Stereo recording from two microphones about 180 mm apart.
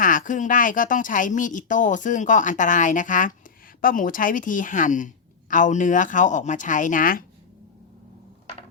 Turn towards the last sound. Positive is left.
turn(degrees=50)  # may be behind; listen again after turning